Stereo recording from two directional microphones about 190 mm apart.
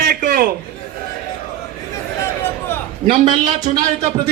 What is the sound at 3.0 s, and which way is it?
Speech, 25° right (ahead or behind).